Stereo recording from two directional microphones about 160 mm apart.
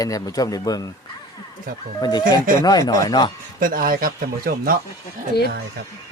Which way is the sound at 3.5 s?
60° right (ahead or behind).